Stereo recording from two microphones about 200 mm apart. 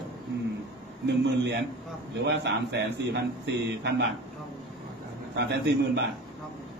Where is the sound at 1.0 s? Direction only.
60° right (ahead or behind).